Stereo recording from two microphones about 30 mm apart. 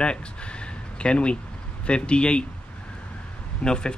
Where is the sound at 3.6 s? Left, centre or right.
Left.